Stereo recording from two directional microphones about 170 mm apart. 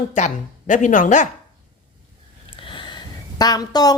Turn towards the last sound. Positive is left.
turn(degrees=20)  # may be behind; listen again after turning